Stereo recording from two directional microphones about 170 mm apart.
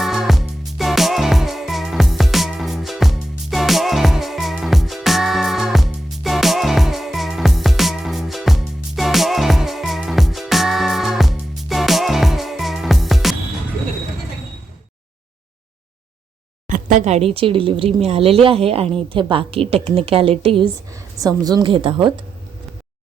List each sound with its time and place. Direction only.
0.0 s music: centre (ahead or behind)
16.6 s speech: 50° right (ahead or behind); by 20.7 s 35° right (ahead or behind)
20.9 s a woman's voice: 20° right (ahead or behind)